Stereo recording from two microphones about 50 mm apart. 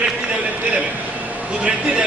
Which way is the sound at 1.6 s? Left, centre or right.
Centre.